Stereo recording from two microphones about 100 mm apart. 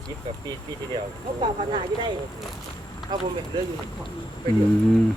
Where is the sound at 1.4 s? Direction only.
55° right (ahead or behind).